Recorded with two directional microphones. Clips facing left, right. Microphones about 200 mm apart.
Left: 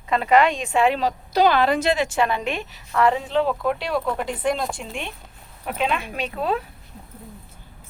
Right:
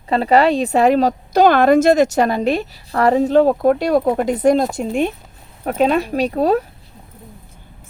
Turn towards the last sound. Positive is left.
turn(degrees=-40)  # may be behind; listen again after turning